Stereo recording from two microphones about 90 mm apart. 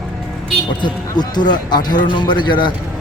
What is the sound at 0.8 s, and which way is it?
A man's voice, 55° left (ahead or behind).